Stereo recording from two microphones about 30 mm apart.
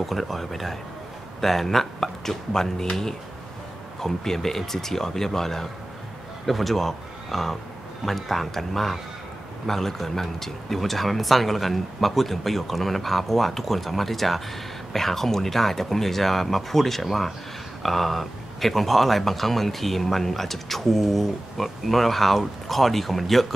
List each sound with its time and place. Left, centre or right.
0.0 s speech: centre
4.0 s speech: centre